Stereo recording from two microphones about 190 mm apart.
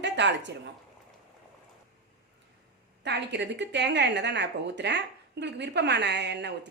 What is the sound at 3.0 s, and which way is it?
A woman's voice, 65° right (ahead or behind).